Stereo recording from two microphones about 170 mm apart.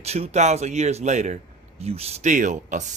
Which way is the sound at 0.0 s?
40° right (ahead or behind).